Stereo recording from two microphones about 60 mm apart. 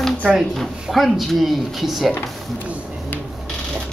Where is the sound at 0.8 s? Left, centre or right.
Centre.